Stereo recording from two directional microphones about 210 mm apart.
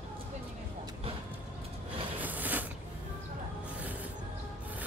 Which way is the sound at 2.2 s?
10° right (ahead or behind).